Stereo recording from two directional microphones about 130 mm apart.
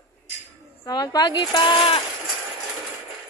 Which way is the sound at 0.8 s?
30° left (ahead or behind).